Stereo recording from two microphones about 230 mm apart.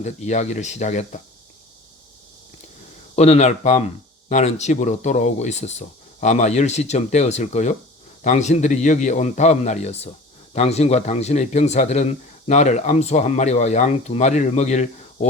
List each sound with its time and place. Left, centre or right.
0.0 s a man's voice: left
3.2 s a man's voice: left